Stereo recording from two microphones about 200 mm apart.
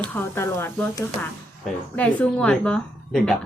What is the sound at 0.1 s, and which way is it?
A woman's voice, 10° left (ahead or behind).